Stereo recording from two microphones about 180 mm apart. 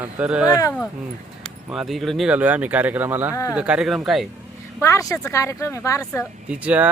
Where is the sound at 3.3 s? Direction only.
20° left (ahead or behind).